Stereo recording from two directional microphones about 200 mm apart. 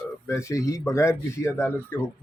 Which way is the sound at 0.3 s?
15° left (ahead or behind).